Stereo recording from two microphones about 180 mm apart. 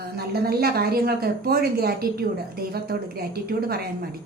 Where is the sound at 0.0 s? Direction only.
60° right (ahead or behind).